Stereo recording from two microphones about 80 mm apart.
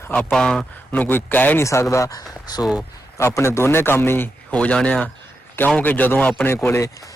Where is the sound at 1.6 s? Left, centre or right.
Left.